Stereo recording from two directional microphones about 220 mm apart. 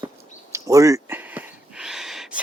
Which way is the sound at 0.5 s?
15° right (ahead or behind).